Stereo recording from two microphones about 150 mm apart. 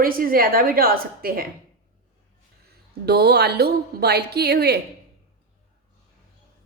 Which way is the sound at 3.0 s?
90° right.